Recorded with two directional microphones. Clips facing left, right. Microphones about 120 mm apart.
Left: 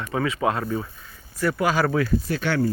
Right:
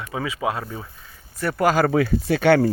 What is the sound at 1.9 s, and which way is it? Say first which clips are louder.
Speech: right 3 dB; 70° right (ahead or behind).